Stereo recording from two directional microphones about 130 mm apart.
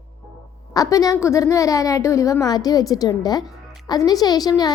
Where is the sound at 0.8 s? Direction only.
25° left (ahead or behind).